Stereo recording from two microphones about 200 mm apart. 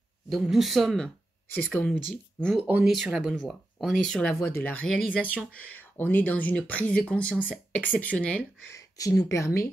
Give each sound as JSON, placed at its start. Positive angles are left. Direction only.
{"t": 0.3, "sound": "speech", "side_deg": 0}